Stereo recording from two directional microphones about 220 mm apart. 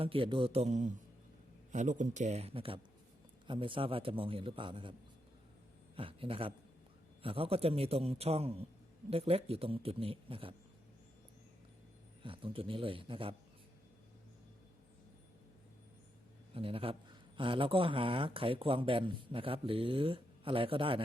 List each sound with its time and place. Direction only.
0.0 s a man's voice: 25° right (ahead or behind)
6.0 s speech: 25° right (ahead or behind)
12.2 s speech: 25° right (ahead or behind)
16.6 s speech: 25° right (ahead or behind)